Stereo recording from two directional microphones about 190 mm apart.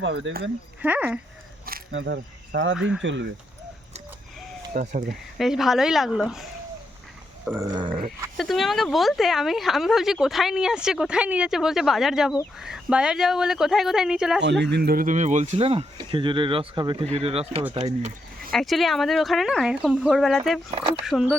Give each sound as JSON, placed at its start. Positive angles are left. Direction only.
{"t": 0.0, "sound": "speech", "side_deg": -80}
{"t": 0.8, "sound": "speech", "side_deg": -10}
{"t": 1.9, "sound": "speech", "side_deg": -80}
{"t": 2.1, "sound": "speech", "side_deg": -65}
{"t": 4.7, "sound": "speech", "side_deg": -45}
{"t": 5.4, "sound": "speech", "side_deg": 0}
{"t": 7.4, "sound": "speech", "side_deg": -15}
{"t": 8.4, "sound": "speech", "side_deg": 0}
{"t": 14.6, "sound": "speech", "side_deg": -60}
{"t": 18.5, "sound": "speech", "side_deg": 0}
{"t": 20.7, "sound": "speech", "side_deg": -30}
{"t": 21.0, "sound": "speech", "side_deg": 0}